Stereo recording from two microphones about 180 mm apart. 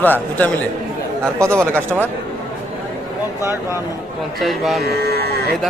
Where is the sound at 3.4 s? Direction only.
15° right (ahead or behind).